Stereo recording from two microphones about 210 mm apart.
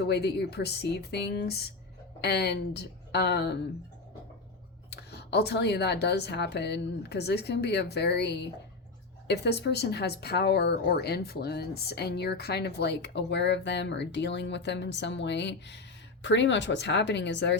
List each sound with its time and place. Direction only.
0.0 s a woman's voice: 55° left (ahead or behind)
4.9 s a woman's voice: 50° left (ahead or behind)